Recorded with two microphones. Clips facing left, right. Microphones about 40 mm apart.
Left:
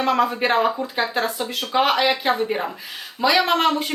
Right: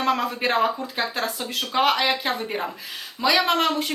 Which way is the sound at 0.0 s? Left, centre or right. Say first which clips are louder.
Left 3 dB; centre.